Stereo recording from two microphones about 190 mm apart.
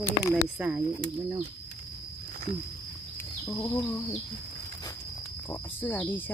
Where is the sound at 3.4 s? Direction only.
15° left (ahead or behind).